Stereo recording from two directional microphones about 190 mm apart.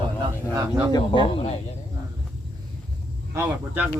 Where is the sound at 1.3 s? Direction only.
30° left (ahead or behind).